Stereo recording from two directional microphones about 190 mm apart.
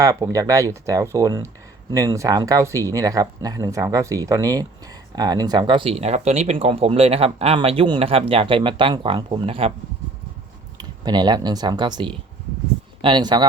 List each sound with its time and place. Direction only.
0.0 s speech: 15° right (ahead or behind)
10.8 s speech: 20° right (ahead or behind)